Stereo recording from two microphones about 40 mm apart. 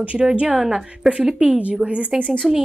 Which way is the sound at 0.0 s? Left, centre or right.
Right.